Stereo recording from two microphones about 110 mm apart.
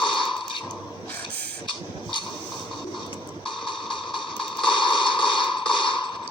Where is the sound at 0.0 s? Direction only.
50° left (ahead or behind).